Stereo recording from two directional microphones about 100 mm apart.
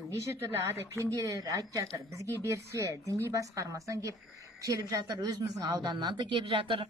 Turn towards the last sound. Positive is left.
turn(degrees=-55)  # may be behind; listen again after turning